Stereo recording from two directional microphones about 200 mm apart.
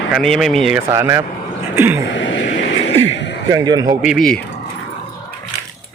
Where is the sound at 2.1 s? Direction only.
65° left (ahead or behind).